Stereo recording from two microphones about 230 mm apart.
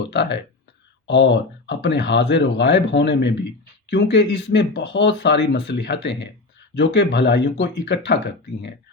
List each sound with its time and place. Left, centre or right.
0.1 s speech: left